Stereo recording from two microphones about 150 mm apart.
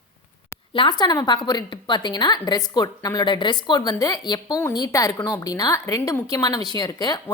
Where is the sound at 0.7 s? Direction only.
30° left (ahead or behind).